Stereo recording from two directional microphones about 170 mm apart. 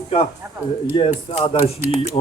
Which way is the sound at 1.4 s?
35° left (ahead or behind).